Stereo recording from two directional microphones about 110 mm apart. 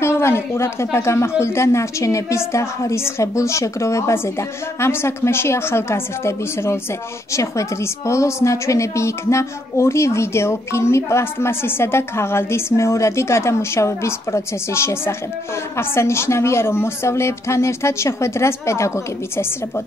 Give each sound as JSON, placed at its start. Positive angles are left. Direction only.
{"t": 0.0, "sound": "a woman's voice", "side_deg": 25}